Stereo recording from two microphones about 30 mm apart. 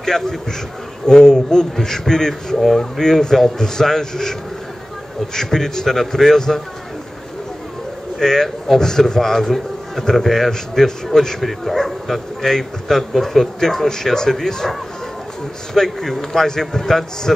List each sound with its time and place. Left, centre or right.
0.0 s a man's voice: centre
8.2 s a man's voice: centre
13.8 s a man's voice: centre
15.7 s a man's voice: centre